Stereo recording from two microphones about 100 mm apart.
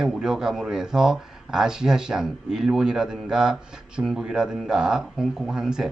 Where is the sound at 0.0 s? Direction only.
5° right (ahead or behind).